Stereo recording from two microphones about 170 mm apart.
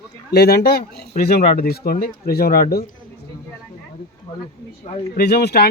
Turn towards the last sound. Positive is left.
turn(degrees=70)  # may be behind; listen again after turning